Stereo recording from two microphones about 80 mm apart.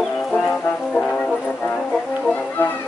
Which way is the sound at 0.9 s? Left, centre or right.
Centre.